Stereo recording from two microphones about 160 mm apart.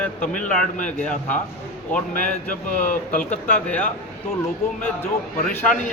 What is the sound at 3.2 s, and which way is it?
Speech, 10° left (ahead or behind).